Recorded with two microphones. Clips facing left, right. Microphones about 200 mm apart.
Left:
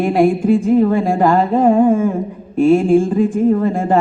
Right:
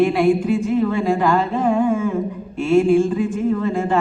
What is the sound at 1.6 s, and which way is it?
Speech, 40° left (ahead or behind).